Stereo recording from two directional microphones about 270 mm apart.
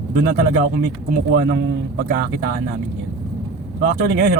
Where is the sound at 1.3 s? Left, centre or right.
Right.